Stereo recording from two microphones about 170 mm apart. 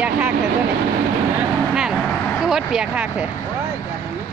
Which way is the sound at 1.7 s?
Centre (ahead or behind).